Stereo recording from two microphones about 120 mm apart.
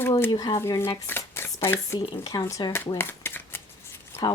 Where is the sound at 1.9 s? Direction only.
35° left (ahead or behind).